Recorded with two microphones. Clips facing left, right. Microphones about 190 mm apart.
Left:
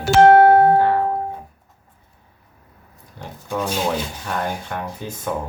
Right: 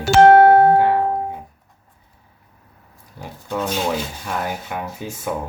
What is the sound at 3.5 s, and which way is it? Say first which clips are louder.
Speech: even; 10° left (ahead or behind).